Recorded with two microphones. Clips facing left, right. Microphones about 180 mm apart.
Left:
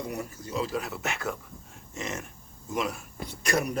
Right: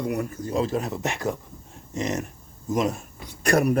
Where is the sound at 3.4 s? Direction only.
60° right (ahead or behind).